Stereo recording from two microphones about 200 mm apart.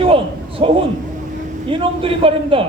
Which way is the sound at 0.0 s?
25° right (ahead or behind).